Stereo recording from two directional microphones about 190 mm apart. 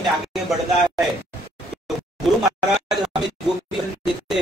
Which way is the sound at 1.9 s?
Centre (ahead or behind).